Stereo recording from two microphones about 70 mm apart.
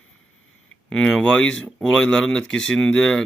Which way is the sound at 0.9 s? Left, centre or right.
Centre.